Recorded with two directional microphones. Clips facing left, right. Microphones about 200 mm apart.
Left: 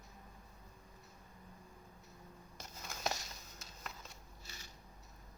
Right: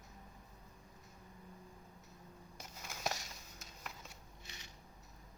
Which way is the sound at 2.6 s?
5° right (ahead or behind).